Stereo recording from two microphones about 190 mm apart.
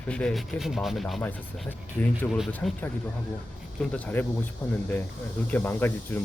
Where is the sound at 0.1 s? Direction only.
5° left (ahead or behind).